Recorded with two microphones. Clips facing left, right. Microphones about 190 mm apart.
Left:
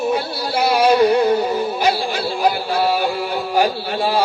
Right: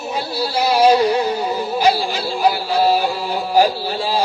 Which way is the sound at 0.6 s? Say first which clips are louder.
Even; 55° left (ahead or behind).